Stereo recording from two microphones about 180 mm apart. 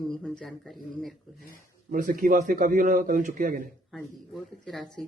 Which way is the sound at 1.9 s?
50° right (ahead or behind).